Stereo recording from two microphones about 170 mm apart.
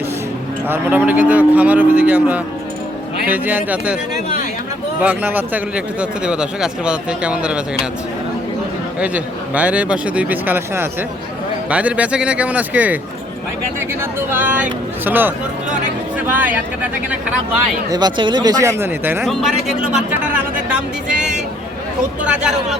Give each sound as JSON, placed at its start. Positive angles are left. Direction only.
{"t": 0.7, "sound": "speech", "side_deg": -10}
{"t": 4.9, "sound": "speech", "side_deg": -10}
{"t": 9.0, "sound": "speech", "side_deg": -10}
{"t": 17.8, "sound": "speech", "side_deg": -25}
{"t": 19.2, "sound": "a man's voice", "side_deg": 0}